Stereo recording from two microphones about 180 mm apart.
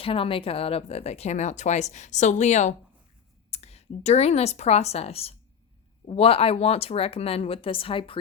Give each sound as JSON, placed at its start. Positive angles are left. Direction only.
{"t": 0.0, "sound": "a woman's voice", "side_deg": 30}